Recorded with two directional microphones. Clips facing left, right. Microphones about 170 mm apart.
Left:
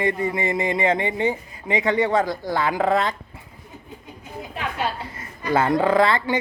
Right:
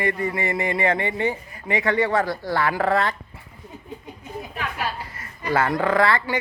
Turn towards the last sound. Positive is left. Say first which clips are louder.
# left 2 dB
turn(degrees=20)  # may be behind; listen again after turning